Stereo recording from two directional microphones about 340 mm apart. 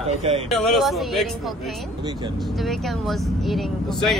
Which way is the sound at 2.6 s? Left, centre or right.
Centre.